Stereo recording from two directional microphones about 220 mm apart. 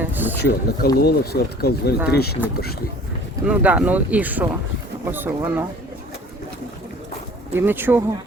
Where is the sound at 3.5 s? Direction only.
5° right (ahead or behind).